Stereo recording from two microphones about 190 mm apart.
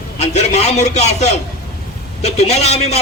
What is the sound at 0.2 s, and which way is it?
A man's voice, 35° left (ahead or behind).